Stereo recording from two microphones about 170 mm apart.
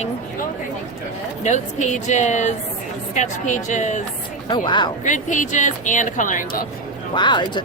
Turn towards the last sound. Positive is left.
turn(degrees=25)  # may be behind; listen again after turning